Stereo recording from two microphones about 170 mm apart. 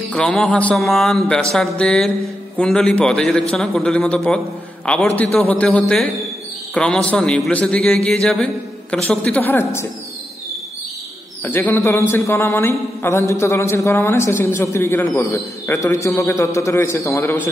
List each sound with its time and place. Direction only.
0.1 s speech: 5° left (ahead or behind)
11.4 s speech: 10° left (ahead or behind)